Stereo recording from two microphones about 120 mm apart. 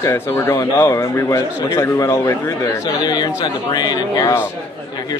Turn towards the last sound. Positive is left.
turn(degrees=30)  # may be behind; listen again after turning